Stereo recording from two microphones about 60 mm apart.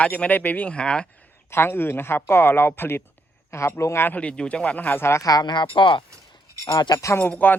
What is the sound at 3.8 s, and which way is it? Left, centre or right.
Speech, left.